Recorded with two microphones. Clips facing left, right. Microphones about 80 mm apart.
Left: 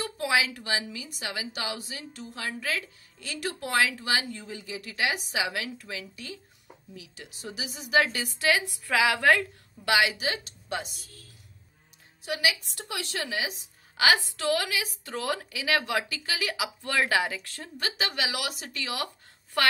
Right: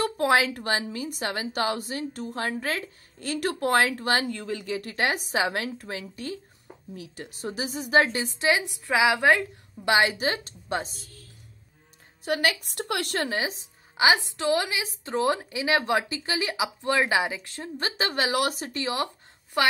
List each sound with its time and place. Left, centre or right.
0.0 s a woman's voice: right
4.3 s a woman's voice: right
9.9 s speech: right
12.3 s a woman's voice: right
13.9 s a woman's voice: right
19.6 s a woman's voice: centre